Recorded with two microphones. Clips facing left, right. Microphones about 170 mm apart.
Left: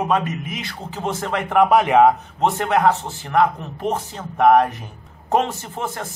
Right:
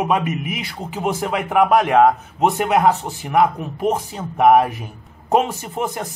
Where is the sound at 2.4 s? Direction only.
10° right (ahead or behind).